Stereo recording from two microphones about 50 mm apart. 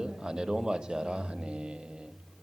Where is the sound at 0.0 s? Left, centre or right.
Centre.